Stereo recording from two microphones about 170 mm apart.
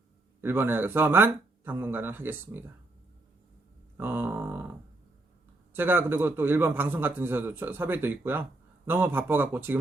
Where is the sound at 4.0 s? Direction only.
10° right (ahead or behind).